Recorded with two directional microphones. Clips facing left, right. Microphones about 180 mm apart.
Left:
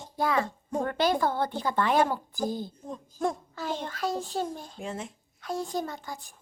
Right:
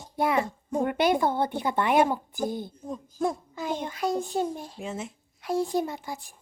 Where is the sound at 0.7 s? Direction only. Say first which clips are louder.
Right 6 dB; 10° right (ahead or behind).